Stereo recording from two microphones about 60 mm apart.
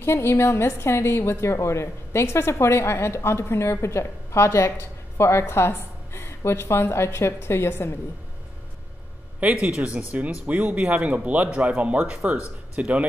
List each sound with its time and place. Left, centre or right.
0.0 s a woman's voice: left
9.4 s speech: right